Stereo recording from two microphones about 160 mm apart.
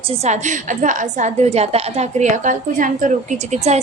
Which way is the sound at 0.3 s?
50° right (ahead or behind).